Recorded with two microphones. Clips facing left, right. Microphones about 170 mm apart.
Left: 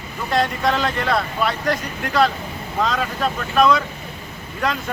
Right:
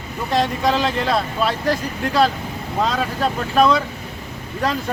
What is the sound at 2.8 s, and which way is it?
Speech, 30° right (ahead or behind).